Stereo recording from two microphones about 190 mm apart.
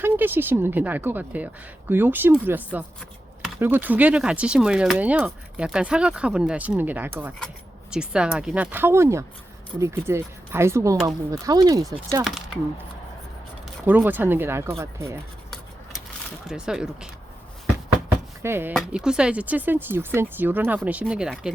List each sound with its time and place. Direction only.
0.0 s speech: 10° right (ahead or behind)
13.8 s speech: 10° right (ahead or behind)
16.5 s speech: 5° right (ahead or behind)
18.4 s speech: 10° right (ahead or behind)